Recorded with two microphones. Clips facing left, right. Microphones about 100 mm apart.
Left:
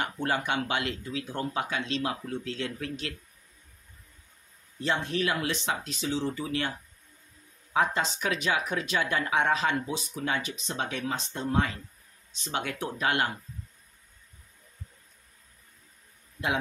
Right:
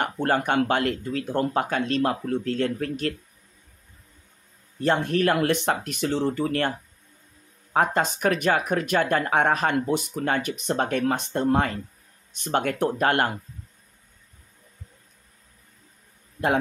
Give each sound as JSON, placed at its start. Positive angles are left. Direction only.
{"t": 0.0, "sound": "speech", "side_deg": -50}
{"t": 4.7, "sound": "speech", "side_deg": -50}
{"t": 7.7, "sound": "speech", "side_deg": -50}